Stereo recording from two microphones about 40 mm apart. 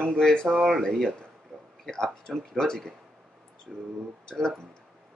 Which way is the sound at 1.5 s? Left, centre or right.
Centre.